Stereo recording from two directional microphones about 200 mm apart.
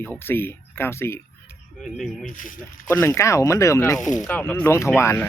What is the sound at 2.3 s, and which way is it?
Speech, 40° left (ahead or behind).